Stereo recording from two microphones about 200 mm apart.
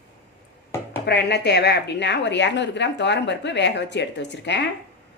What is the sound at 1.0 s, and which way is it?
A woman's voice, 55° left (ahead or behind).